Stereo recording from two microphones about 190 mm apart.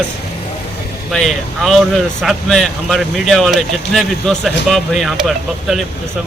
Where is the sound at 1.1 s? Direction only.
Centre (ahead or behind).